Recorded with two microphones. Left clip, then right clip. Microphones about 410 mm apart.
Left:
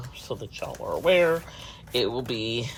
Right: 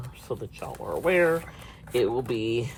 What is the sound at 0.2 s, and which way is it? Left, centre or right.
Speech, centre.